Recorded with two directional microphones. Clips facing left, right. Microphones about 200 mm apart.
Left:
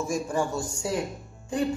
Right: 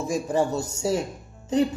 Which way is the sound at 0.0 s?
20° right (ahead or behind).